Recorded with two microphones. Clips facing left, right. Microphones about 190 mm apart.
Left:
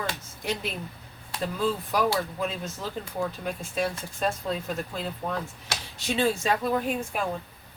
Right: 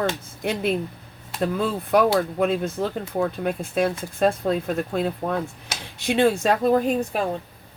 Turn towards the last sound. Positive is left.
turn(degrees=-40)  # may be behind; listen again after turning